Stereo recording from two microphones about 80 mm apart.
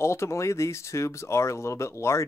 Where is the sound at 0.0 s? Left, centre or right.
Left.